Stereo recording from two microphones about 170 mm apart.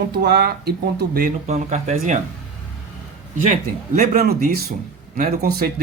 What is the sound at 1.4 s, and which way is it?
Speech, 40° right (ahead or behind).